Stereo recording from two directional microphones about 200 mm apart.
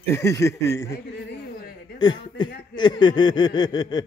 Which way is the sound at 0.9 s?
50° left (ahead or behind).